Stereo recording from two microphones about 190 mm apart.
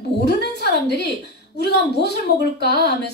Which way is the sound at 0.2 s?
60° left (ahead or behind).